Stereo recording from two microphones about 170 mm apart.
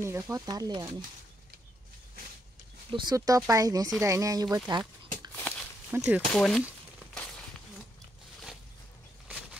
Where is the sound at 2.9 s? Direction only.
20° right (ahead or behind).